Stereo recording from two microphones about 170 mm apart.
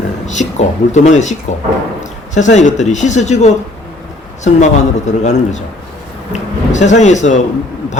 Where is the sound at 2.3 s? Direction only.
45° left (ahead or behind).